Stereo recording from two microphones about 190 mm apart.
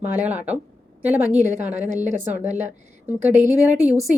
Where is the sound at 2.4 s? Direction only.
40° right (ahead or behind).